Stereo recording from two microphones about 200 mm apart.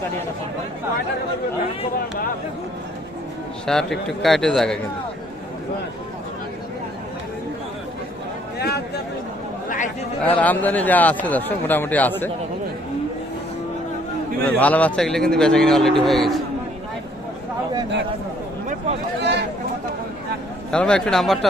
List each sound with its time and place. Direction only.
3.7 s speech: centre (ahead or behind)
8.5 s a sound: 55° left (ahead or behind)
9.6 s chatter: 40° left (ahead or behind)
10.3 s speech: 10° left (ahead or behind)
14.4 s speech: 5° left (ahead or behind)
19.2 s a sound: 60° right (ahead or behind)
20.7 s speech: 5° left (ahead or behind)